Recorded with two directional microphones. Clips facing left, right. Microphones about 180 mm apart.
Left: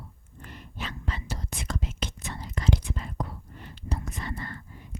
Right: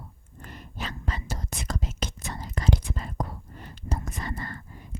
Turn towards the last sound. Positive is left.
turn(degrees=-45)  # may be behind; listen again after turning